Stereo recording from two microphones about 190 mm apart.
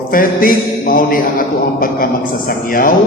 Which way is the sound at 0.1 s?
50° left (ahead or behind).